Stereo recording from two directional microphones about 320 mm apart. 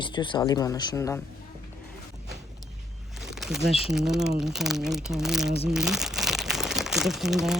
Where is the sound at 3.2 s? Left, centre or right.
Centre.